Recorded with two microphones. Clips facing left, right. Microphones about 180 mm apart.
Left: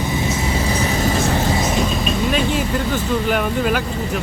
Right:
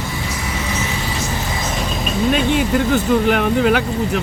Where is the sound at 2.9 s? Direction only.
55° right (ahead or behind).